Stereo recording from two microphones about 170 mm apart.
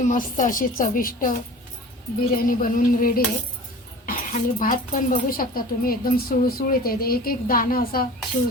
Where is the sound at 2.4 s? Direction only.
55° left (ahead or behind).